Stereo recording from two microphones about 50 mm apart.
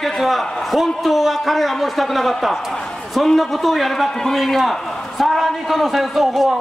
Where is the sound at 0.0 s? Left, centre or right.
Centre.